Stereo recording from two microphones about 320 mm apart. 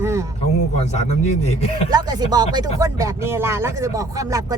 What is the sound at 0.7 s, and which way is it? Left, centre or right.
Speech, centre.